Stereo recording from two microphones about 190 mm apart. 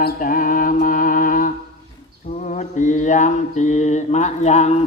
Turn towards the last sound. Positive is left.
turn(degrees=35)  # may be behind; listen again after turning